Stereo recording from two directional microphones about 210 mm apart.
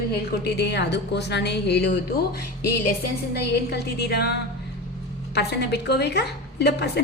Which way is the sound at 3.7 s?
50° left (ahead or behind).